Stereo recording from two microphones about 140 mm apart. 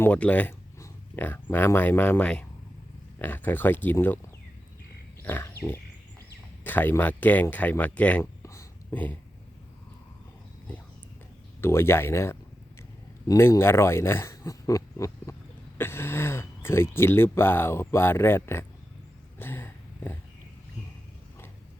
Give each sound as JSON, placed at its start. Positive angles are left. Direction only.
{"t": 0.0, "sound": "speech", "side_deg": 10}
{"t": 5.2, "sound": "pig", "side_deg": 15}
{"t": 6.7, "sound": "speech", "side_deg": 15}
{"t": 8.4, "sound": "a sound", "side_deg": 20}
{"t": 11.6, "sound": "speech", "side_deg": 20}
{"t": 19.4, "sound": "a sound", "side_deg": 15}